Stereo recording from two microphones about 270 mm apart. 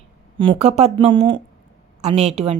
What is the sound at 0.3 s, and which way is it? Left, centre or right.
A woman's voice, right.